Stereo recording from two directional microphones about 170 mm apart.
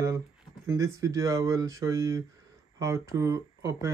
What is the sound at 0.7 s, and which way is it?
Speech, 15° right (ahead or behind).